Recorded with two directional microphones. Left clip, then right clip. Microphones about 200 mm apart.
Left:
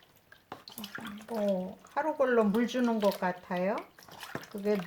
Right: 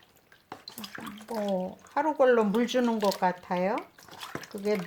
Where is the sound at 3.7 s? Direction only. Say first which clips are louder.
Right 4 dB; 5° right (ahead or behind).